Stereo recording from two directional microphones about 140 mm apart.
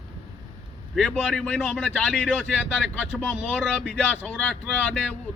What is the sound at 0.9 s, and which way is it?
Speech, 5° left (ahead or behind).